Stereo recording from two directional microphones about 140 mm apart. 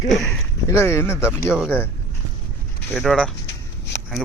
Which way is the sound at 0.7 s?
20° left (ahead or behind).